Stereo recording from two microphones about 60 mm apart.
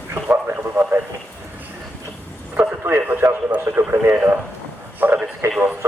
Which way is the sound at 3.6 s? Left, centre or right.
Right.